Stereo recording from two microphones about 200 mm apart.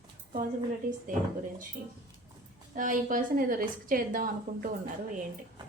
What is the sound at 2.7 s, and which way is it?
A woman's voice, 40° right (ahead or behind).